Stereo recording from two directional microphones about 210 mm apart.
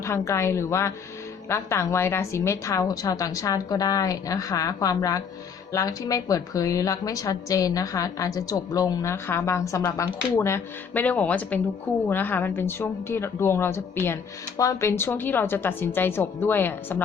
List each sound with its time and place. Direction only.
0.0 s a woman's voice: 15° left (ahead or behind)